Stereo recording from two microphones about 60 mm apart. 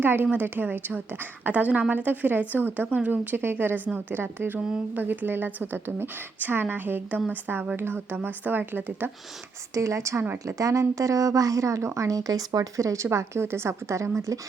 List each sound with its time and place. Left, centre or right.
0.0 s a woman's voice: right
9.7 s a woman's voice: right
10.3 s a woman's voice: right
11.9 s a woman's voice: right